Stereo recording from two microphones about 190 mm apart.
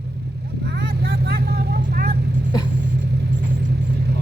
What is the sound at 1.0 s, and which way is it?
Vehicle, 60° right (ahead or behind).